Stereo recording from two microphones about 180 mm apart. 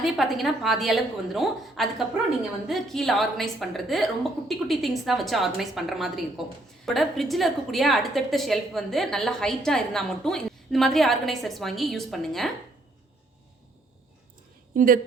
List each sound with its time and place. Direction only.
0.0 s a woman's voice: centre (ahead or behind)
14.7 s a woman's voice: 50° right (ahead or behind)